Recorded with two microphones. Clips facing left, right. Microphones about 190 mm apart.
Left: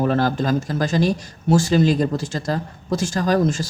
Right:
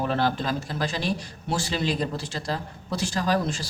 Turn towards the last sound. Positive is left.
turn(degrees=45)  # may be behind; listen again after turning